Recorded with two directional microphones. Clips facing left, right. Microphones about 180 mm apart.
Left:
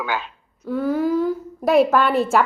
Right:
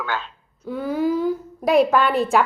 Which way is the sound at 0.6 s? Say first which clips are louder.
Left 2 dB; centre (ahead or behind).